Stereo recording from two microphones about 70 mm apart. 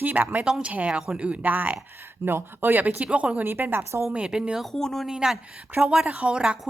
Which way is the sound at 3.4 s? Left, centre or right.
Right.